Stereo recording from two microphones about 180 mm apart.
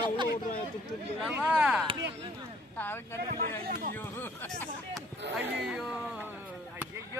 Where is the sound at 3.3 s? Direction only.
55° right (ahead or behind).